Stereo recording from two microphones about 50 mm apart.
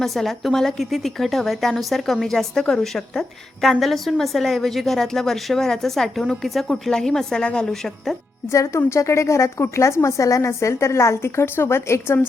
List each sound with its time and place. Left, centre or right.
0.0 s a woman's voice: centre; by 7.7 s left
8.5 s a woman's voice: left
11.4 s a woman's voice: left